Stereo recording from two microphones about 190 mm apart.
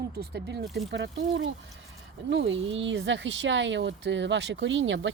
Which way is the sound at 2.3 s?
70° right (ahead or behind).